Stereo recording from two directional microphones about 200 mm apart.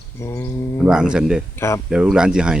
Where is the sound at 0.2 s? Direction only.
10° left (ahead or behind).